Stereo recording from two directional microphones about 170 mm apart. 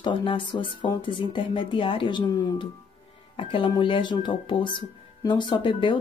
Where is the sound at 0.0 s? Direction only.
30° left (ahead or behind).